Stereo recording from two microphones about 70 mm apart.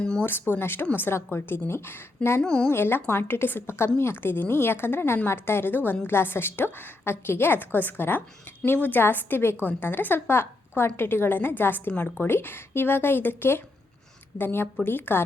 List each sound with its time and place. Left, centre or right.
0.0 s a sound: centre
0.3 s a woman's voice: left
2.4 s speech: centre
2.6 s a woman's voice: left